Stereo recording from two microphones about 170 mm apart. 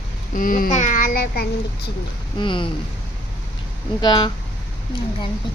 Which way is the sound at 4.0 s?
25° left (ahead or behind).